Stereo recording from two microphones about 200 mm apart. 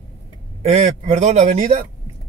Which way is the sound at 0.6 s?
35° right (ahead or behind).